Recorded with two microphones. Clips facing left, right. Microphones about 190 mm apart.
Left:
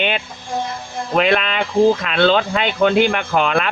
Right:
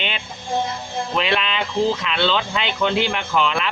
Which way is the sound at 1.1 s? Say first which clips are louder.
Left 6 dB; 50° left (ahead or behind).